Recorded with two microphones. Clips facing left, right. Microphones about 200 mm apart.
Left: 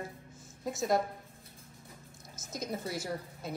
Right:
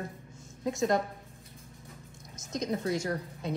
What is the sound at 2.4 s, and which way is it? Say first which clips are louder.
A woman's voice: right 5 dB; 5° left (ahead or behind).